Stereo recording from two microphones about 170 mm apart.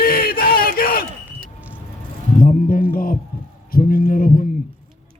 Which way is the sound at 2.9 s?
55° left (ahead or behind).